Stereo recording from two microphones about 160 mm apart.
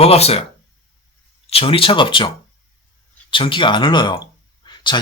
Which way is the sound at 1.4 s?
35° left (ahead or behind).